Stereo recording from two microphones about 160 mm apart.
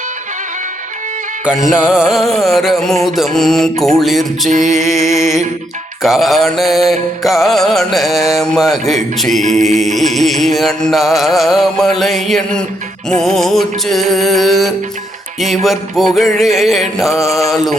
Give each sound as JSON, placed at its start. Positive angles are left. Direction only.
{"t": 1.5, "sound": "music", "side_deg": -5}
{"t": 4.5, "sound": "music", "side_deg": -50}
{"t": 5.0, "sound": "music", "side_deg": 20}
{"t": 6.0, "sound": "music", "side_deg": 0}
{"t": 9.4, "sound": "music", "side_deg": -50}
{"t": 9.6, "sound": "music", "side_deg": 0}